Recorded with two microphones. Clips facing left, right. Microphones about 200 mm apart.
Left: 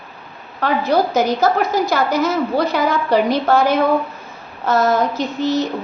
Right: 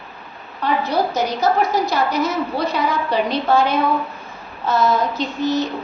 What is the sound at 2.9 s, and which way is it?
Speech, 45° left (ahead or behind).